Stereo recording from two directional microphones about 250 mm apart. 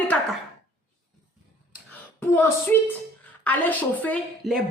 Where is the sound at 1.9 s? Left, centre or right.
Centre.